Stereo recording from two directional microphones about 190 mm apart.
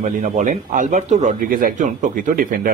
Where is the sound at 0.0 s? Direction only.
45° right (ahead or behind).